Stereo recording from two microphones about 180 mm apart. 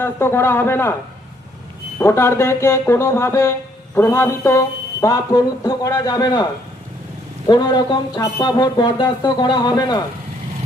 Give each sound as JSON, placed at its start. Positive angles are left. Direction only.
{"t": 0.0, "sound": "speech", "side_deg": 15}
{"t": 2.0, "sound": "speech", "side_deg": 15}
{"t": 7.4, "sound": "speech", "side_deg": 25}